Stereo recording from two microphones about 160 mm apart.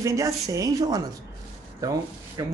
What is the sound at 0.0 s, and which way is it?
Speech, 20° right (ahead or behind).